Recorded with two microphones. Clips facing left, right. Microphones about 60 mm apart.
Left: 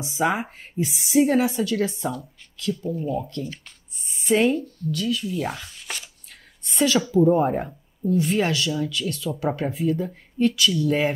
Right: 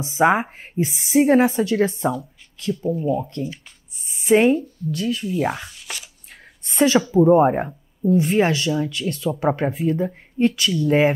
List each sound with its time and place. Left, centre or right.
0.0 s a woman's voice: right
2.7 s speech: right
4.1 s a woman's voice: right
5.3 s speech: centre
5.9 s a sound: centre
6.6 s a woman's voice: right